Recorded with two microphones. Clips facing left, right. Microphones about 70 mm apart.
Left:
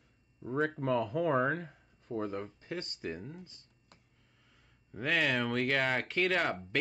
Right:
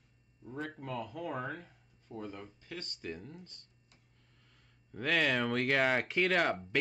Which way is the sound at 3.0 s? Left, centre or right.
Centre.